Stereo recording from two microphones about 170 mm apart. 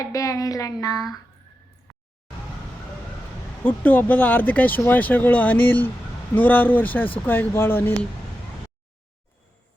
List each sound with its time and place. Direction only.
0.0 s speech: 20° left (ahead or behind)
3.6 s speech: 10° left (ahead or behind)